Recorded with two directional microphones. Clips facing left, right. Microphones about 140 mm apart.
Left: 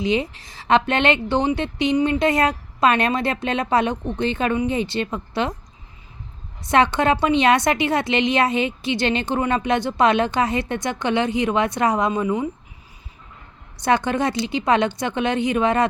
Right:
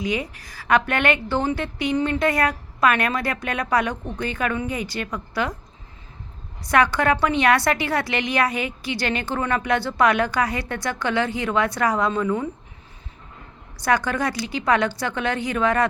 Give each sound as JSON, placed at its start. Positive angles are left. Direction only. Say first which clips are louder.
{"t": 0.0, "sound": "a woman's voice", "louder": "left 4 dB", "side_deg": 25}
{"t": 6.6, "sound": "a woman's voice", "louder": "left 2 dB", "side_deg": 20}
{"t": 13.7, "sound": "a woman's voice", "louder": "left 2 dB", "side_deg": 20}